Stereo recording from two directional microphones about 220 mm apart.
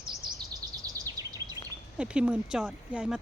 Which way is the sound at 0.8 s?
15° right (ahead or behind).